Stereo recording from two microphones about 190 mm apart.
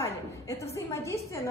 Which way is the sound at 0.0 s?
15° left (ahead or behind).